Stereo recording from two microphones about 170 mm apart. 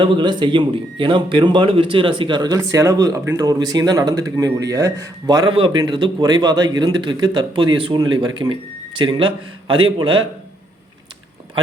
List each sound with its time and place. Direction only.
0.0 s speech: 30° right (ahead or behind)